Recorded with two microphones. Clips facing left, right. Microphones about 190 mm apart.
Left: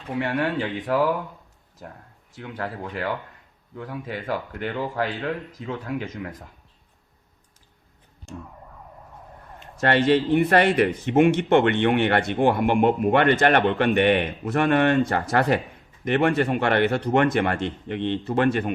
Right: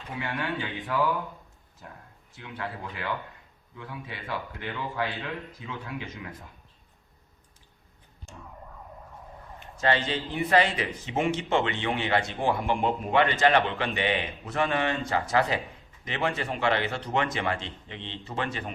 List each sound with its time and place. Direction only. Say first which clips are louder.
0.2 s speech: left 8 dB; 40° left (ahead or behind)
2.3 s speech: left 5 dB; 40° left (ahead or behind)
9.8 s a man's voice: left 8 dB; 65° left (ahead or behind)